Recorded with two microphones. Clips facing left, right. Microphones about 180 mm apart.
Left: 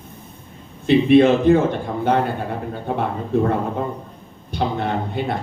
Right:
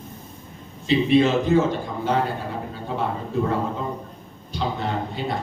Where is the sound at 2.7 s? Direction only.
60° left (ahead or behind).